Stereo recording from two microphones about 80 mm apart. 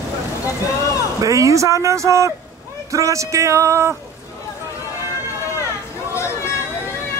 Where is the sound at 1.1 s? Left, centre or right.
Right.